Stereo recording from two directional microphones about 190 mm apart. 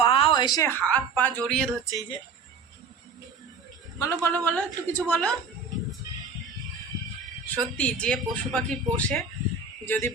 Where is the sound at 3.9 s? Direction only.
15° left (ahead or behind).